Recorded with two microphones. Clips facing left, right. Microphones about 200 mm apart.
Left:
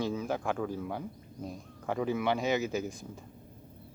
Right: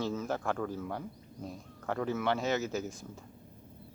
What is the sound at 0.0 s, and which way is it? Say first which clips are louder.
A man's voice: left 1 dB; 10° left (ahead or behind).